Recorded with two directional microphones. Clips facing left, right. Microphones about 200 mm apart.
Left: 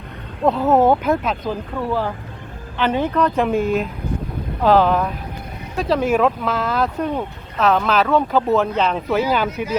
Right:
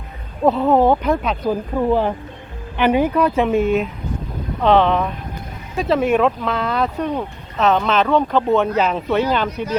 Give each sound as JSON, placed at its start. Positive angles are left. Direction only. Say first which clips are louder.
{"t": 0.4, "sound": "speech", "louder": "right 1 dB", "side_deg": 0}
{"t": 1.5, "sound": "speech", "louder": "right 5 dB", "side_deg": -20}